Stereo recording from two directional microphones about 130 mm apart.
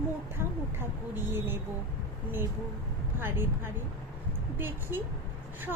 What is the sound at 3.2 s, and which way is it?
A woman's voice, 20° right (ahead or behind).